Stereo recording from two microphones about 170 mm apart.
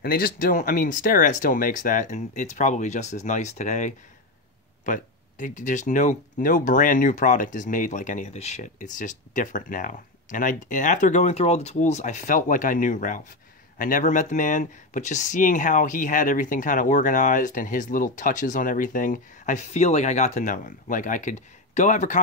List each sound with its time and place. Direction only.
0.0 s speech: 60° left (ahead or behind)